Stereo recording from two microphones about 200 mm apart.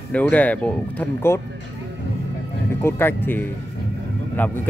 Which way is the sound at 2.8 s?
10° left (ahead or behind).